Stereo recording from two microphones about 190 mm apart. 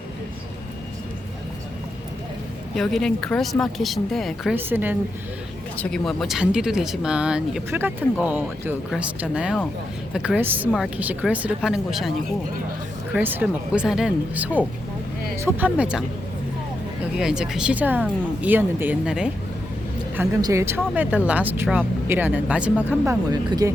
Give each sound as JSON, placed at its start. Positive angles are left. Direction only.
{"t": 2.7, "sound": "speech", "side_deg": 0}
{"t": 4.5, "sound": "speech", "side_deg": -10}
{"t": 5.7, "sound": "speech", "side_deg": 5}
{"t": 13.1, "sound": "speech", "side_deg": -10}
{"t": 17.2, "sound": "speech", "side_deg": -5}
{"t": 23.3, "sound": "speech", "side_deg": -20}